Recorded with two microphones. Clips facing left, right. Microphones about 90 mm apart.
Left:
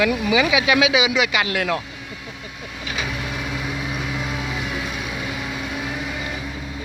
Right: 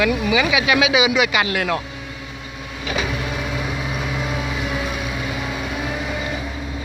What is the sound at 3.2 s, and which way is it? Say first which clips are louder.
Vehicle: right 2 dB; 10° right (ahead or behind).